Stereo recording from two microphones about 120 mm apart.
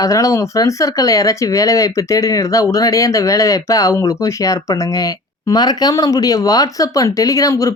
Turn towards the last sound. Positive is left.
turn(degrees=25)  # may be behind; listen again after turning